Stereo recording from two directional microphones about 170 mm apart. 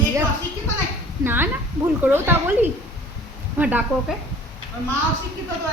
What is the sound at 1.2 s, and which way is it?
A woman's voice, 10° right (ahead or behind).